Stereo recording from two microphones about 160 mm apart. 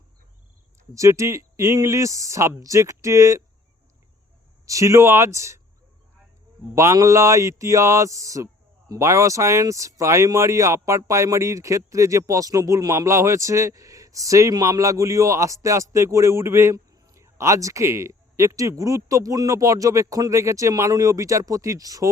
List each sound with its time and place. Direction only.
0.9 s speech: 20° right (ahead or behind)
4.6 s speech: 20° right (ahead or behind)
6.7 s speech: 20° right (ahead or behind)